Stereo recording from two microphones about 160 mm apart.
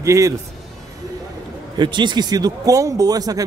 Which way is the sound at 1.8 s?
30° right (ahead or behind).